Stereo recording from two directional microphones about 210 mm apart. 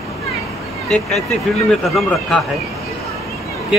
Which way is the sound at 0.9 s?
Centre (ahead or behind).